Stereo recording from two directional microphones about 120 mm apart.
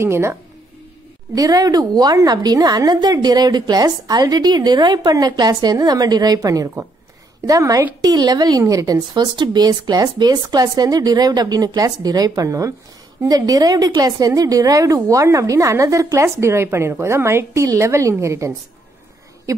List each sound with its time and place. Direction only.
0.0 s a woman's voice: 20° right (ahead or behind)